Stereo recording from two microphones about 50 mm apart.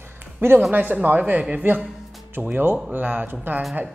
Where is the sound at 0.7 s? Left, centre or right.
Right.